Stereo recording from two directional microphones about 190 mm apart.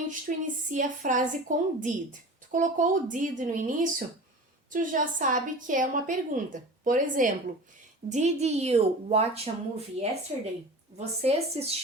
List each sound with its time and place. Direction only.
0.1 s a woman's voice: 40° right (ahead or behind)